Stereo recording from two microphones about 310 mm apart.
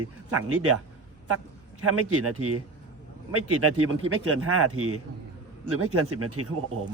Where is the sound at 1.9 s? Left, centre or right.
Right.